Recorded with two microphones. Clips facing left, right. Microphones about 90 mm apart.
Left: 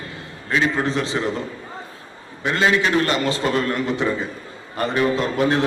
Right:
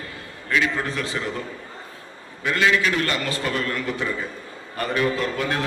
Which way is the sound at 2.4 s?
30° left (ahead or behind).